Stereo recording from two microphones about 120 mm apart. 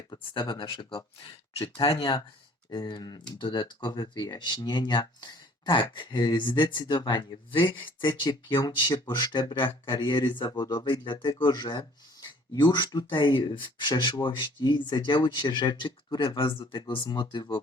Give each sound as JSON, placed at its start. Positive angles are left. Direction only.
{"t": 0.1, "sound": "speech", "side_deg": 40}